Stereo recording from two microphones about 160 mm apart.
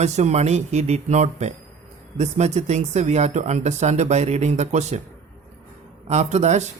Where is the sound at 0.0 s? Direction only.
45° right (ahead or behind).